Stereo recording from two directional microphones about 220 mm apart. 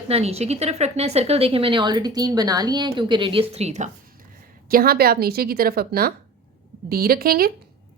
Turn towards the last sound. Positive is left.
turn(degrees=-45)  # may be behind; listen again after turning